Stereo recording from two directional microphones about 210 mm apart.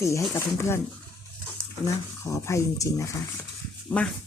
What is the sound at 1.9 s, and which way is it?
Speech, 15° left (ahead or behind).